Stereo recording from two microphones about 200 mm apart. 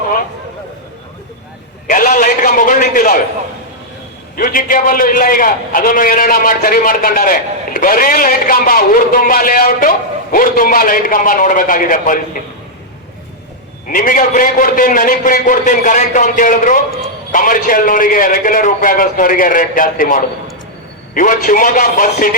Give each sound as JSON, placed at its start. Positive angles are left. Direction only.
{"t": 1.9, "sound": "a man's voice", "side_deg": 45}
{"t": 4.4, "sound": "a man's voice", "side_deg": 40}
{"t": 13.9, "sound": "a man's voice", "side_deg": 40}